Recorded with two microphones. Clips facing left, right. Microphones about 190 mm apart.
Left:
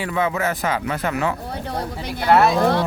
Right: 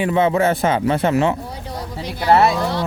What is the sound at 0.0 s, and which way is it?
A man's voice, 25° right (ahead or behind).